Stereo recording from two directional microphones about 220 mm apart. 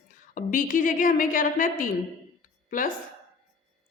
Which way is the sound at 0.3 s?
35° left (ahead or behind).